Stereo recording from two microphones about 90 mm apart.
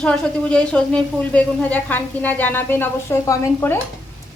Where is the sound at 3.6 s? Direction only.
30° left (ahead or behind).